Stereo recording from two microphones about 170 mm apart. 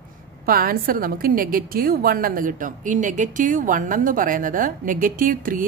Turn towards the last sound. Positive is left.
turn(degrees=-55)  # may be behind; listen again after turning